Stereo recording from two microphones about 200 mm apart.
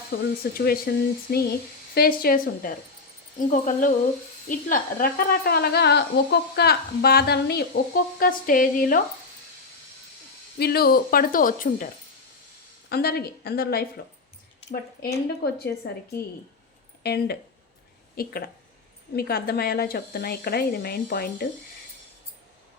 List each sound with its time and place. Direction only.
0.1 s speech: 55° left (ahead or behind)
10.6 s speech: 50° left (ahead or behind)
12.9 s speech: 50° left (ahead or behind)
17.0 s speech: 50° left (ahead or behind)